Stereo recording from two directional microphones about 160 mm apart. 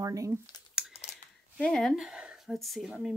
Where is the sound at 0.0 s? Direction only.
20° right (ahead or behind).